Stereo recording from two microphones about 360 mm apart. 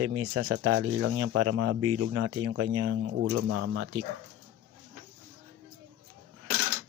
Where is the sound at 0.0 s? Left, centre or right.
Right.